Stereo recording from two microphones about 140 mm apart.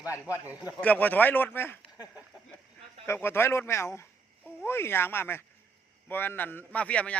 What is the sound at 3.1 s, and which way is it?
A man's voice, 15° left (ahead or behind).